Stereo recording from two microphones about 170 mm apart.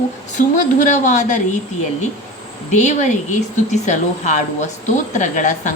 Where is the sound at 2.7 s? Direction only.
45° left (ahead or behind).